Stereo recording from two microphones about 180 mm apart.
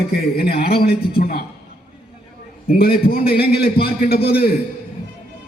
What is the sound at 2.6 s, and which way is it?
A man's voice, 60° left (ahead or behind).